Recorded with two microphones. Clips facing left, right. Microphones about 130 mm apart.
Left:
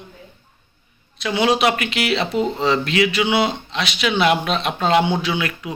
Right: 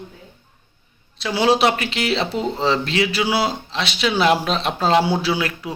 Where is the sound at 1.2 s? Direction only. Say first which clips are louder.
Right 1 dB; 30° right (ahead or behind).